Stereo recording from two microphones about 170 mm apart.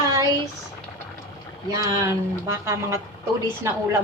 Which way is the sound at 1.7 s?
20° right (ahead or behind).